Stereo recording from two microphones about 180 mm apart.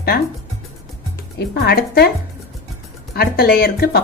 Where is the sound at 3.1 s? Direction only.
60° left (ahead or behind).